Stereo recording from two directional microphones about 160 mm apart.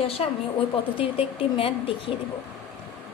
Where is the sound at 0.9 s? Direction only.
35° left (ahead or behind).